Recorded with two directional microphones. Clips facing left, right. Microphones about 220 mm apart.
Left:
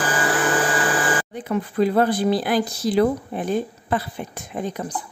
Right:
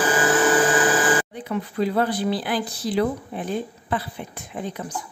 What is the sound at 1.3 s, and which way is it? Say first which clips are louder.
Speech: left 3 dB; 45° left (ahead or behind).